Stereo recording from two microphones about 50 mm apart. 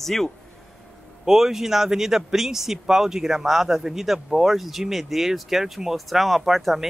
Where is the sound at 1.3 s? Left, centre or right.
Centre.